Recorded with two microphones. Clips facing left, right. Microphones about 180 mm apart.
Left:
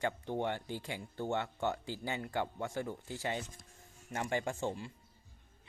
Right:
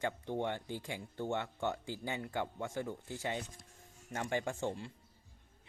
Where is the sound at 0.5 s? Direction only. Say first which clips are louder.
Left 1 dB; 20° right (ahead or behind).